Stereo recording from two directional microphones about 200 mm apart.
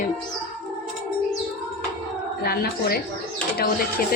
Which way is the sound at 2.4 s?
50° left (ahead or behind).